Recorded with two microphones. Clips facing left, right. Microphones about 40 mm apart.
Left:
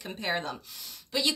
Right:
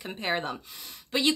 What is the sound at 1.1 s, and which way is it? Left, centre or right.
Speech, right.